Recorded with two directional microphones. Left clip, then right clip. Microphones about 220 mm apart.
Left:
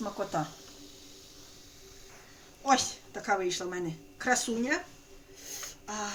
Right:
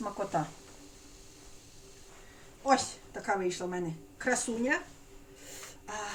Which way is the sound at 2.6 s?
15° left (ahead or behind).